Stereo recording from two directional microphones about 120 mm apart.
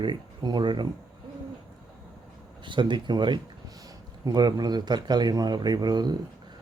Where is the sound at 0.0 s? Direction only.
40° right (ahead or behind).